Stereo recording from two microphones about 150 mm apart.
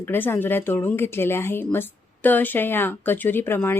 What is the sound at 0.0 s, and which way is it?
A woman's voice, 15° left (ahead or behind).